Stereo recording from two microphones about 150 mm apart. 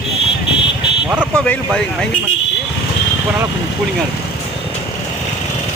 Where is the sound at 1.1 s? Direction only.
10° right (ahead or behind).